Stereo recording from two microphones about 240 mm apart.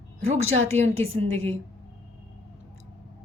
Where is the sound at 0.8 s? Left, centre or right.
Right.